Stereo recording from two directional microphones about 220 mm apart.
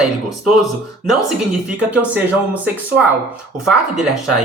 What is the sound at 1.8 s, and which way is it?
Speech, 5° right (ahead or behind).